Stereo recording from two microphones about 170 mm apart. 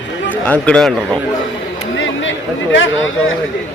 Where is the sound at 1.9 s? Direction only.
90° left.